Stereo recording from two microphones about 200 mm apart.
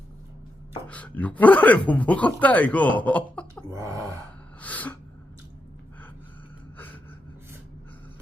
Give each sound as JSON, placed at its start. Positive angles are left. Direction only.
{"t": 0.9, "sound": "speech", "side_deg": 5}
{"t": 3.7, "sound": "gasp", "side_deg": -15}
{"t": 4.6, "sound": "speech", "side_deg": 10}
{"t": 6.7, "sound": "a sound", "side_deg": 10}